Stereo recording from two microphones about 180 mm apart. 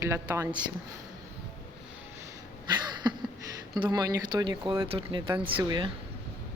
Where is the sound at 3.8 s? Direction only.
25° right (ahead or behind).